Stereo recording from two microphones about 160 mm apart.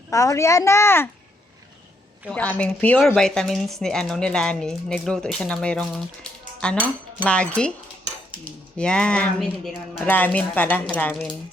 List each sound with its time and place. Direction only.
0.1 s a woman's voice: 20° left (ahead or behind)
2.3 s speech: 10° left (ahead or behind)
6.7 s dishes: 10° right (ahead or behind)
7.3 s speech: 5° left (ahead or behind)
8.8 s speech: 5° left (ahead or behind)